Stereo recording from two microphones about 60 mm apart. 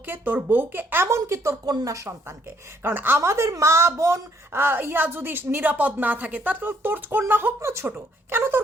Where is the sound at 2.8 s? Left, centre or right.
Right.